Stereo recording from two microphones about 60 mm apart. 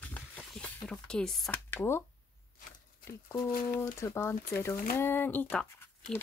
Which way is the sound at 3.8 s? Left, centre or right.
Left.